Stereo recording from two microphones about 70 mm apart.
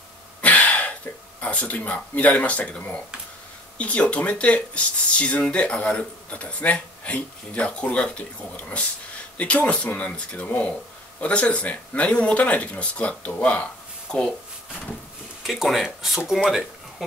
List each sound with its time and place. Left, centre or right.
0.4 s cough: left
1.4 s speech: centre
15.4 s speech: centre